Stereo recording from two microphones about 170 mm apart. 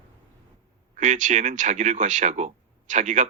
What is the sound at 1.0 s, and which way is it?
Speech, 45° right (ahead or behind).